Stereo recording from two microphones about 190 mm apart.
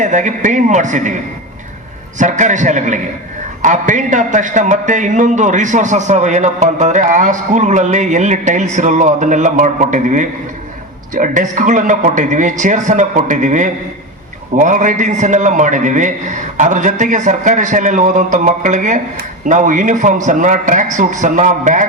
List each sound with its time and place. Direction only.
0.0 s a man's voice: 40° right (ahead or behind)